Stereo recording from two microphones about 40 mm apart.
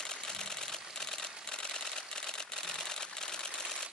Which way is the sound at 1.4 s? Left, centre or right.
Centre.